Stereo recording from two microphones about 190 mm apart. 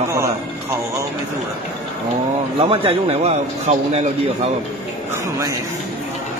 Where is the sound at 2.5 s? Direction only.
30° right (ahead or behind).